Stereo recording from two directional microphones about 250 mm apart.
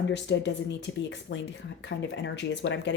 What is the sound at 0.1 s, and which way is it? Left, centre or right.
A woman's voice, left.